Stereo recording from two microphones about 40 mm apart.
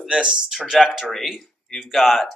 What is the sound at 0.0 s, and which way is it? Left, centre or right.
Speech, centre.